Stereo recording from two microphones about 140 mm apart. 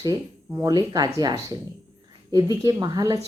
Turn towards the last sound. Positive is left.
turn(degrees=-25)  # may be behind; listen again after turning